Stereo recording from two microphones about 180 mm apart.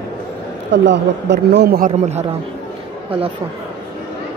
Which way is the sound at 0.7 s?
75° right (ahead or behind).